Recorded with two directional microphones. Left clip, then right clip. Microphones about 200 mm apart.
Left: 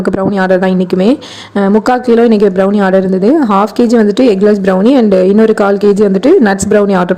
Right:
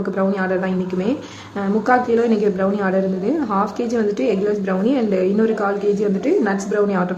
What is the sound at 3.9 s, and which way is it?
A woman's voice, 40° left (ahead or behind).